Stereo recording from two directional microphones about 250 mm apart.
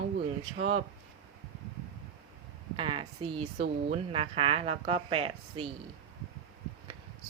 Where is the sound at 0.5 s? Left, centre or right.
Right.